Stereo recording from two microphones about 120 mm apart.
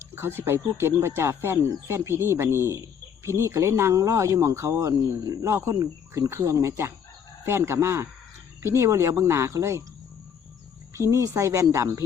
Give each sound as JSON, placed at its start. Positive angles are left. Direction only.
{"t": 0.1, "sound": "speech", "side_deg": -20}
{"t": 10.9, "sound": "speech", "side_deg": -25}